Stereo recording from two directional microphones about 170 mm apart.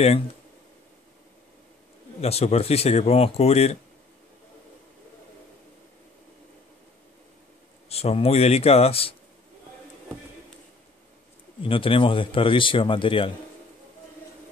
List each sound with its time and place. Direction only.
2.2 s speech: 35° left (ahead or behind)
7.9 s speech: 35° left (ahead or behind)
11.6 s speech: 30° left (ahead or behind)